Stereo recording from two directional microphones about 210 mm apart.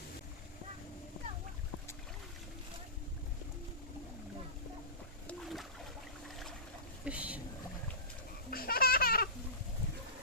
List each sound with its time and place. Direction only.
5.3 s a sound: centre (ahead or behind)
7.0 s boat: 5° right (ahead or behind)
8.4 s baby laughter: 45° left (ahead or behind)